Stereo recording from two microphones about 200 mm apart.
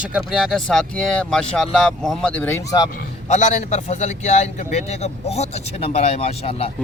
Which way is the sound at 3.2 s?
35° left (ahead or behind).